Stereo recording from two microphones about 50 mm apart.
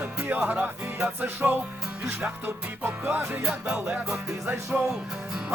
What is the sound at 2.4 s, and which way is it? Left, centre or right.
Music, right.